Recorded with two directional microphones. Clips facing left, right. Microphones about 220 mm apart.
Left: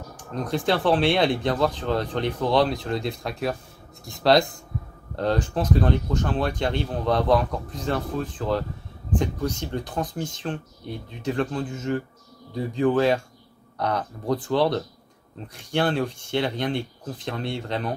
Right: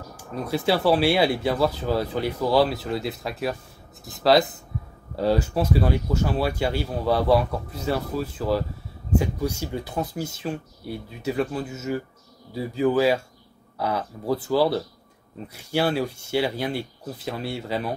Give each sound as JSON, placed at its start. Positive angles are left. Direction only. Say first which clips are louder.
{"t": 0.2, "sound": "speech", "louder": "even", "side_deg": -10}